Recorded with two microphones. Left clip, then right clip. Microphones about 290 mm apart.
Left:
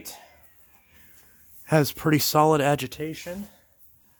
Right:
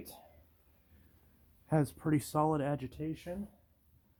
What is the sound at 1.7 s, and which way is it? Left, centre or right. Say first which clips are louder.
Speech: left 11 dB; left.